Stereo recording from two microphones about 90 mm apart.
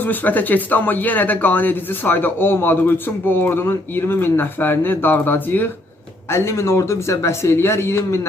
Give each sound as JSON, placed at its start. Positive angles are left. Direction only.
{"t": 0.0, "sound": "speech", "side_deg": 20}